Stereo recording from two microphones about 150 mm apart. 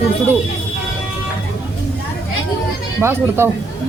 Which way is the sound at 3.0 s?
15° right (ahead or behind).